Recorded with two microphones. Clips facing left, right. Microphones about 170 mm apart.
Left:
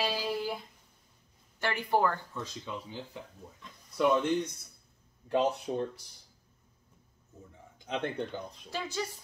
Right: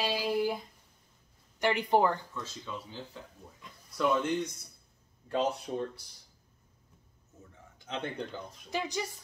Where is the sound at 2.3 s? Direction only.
15° left (ahead or behind).